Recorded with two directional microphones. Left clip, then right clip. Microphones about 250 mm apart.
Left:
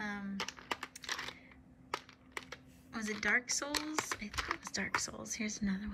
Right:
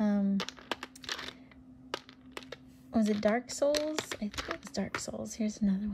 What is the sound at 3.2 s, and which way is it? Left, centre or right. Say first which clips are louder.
Speech: right 1 dB; centre.